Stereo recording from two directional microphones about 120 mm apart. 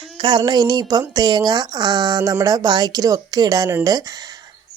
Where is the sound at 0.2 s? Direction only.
40° right (ahead or behind).